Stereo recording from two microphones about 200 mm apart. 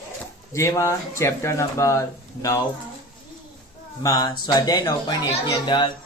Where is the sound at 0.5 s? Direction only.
15° left (ahead or behind).